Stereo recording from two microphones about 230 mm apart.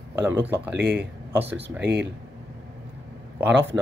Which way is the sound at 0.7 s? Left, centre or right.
Right.